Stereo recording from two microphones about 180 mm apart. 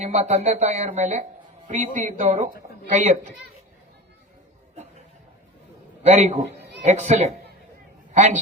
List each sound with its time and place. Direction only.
0.0 s speech: 40° right (ahead or behind)
6.0 s a man's voice: 40° right (ahead or behind)